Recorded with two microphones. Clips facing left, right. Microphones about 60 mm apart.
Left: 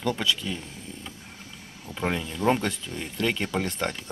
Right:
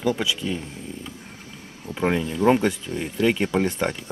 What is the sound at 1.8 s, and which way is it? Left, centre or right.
Speech, centre.